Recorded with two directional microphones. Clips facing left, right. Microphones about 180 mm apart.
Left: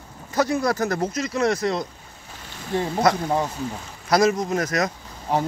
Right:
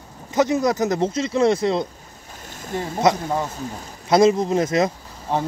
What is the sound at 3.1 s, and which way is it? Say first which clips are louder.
Speech: right 3 dB; 20° right (ahead or behind).